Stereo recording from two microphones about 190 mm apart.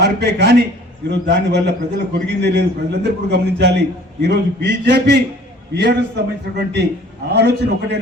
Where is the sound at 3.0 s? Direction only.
60° right (ahead or behind).